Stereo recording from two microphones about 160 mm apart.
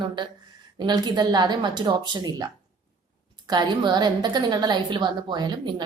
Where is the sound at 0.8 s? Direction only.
25° right (ahead or behind).